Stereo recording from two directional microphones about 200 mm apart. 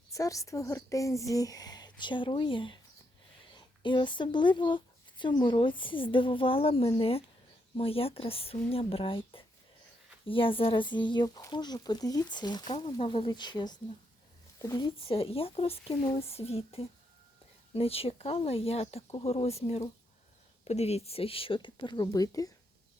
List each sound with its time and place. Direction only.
0.1 s a woman's voice: 15° left (ahead or behind)
3.8 s speech: 25° left (ahead or behind)